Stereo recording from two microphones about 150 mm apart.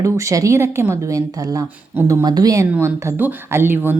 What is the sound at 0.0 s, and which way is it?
A woman's voice, 20° right (ahead or behind).